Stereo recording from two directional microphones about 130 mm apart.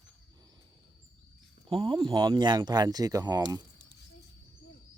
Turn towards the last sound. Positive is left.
turn(degrees=-30)  # may be behind; listen again after turning